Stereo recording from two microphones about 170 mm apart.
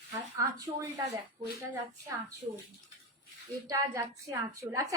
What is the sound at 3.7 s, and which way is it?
A woman's voice, 20° right (ahead or behind).